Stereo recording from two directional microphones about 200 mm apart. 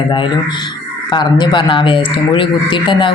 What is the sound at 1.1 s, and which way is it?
A man's voice, 20° left (ahead or behind).